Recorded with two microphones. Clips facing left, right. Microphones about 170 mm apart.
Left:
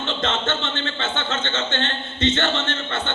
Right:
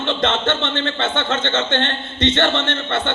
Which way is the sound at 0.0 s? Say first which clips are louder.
Right 5 dB; 70° right (ahead or behind).